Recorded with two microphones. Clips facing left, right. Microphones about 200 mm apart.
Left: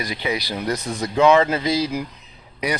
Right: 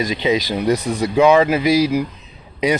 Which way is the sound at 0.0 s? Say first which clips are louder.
Right 7 dB; 20° right (ahead or behind).